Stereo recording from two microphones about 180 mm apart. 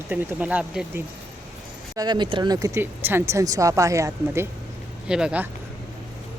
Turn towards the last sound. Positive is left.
turn(degrees=-5)  # may be behind; listen again after turning